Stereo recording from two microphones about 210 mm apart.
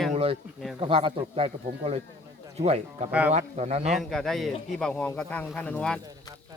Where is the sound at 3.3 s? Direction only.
30° right (ahead or behind).